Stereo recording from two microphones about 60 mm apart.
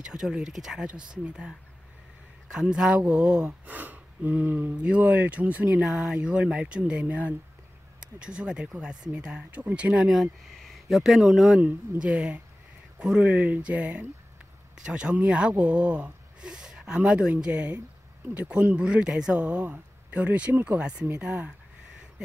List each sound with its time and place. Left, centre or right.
0.0 s speech: centre
2.6 s speech: centre
3.6 s speech: right
10.6 s speech: centre
12.0 s speech: centre